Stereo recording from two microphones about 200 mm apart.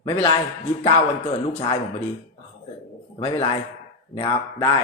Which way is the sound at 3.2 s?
30° left (ahead or behind).